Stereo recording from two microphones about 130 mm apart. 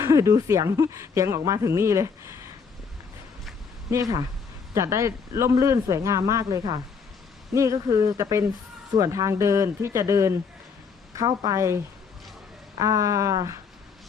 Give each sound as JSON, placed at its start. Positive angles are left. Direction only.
{"t": 0.0, "sound": "speech", "side_deg": -25}
{"t": 4.7, "sound": "speech", "side_deg": -25}